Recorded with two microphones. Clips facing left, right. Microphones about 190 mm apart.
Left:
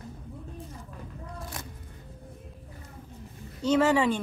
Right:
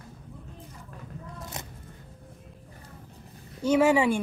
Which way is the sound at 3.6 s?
10° right (ahead or behind).